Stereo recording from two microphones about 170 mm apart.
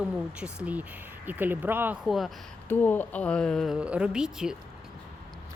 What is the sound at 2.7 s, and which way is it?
Speech, 10° left (ahead or behind).